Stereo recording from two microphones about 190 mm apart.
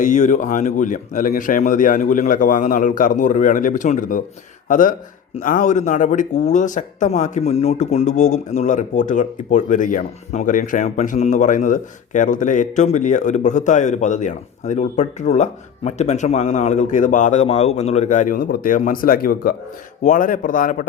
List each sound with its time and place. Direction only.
0.0 s speech: 40° left (ahead or behind)